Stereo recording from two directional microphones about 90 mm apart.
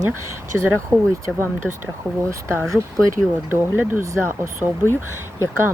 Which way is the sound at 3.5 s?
20° right (ahead or behind).